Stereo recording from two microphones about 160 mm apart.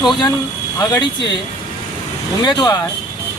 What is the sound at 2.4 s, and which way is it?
Speech, 30° left (ahead or behind).